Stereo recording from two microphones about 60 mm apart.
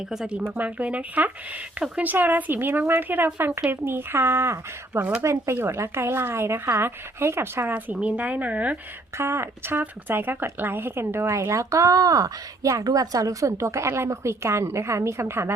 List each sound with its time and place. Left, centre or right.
0.5 s speech: right
4.9 s speech: right
5.2 s a woman's voice: right
7.7 s speech: right
9.1 s a woman's voice: right
11.3 s a woman's voice: right